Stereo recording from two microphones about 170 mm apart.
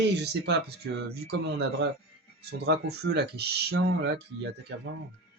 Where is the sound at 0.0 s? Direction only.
80° right.